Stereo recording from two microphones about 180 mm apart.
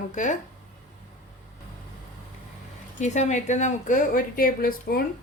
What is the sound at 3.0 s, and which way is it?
A woman's voice, 40° left (ahead or behind).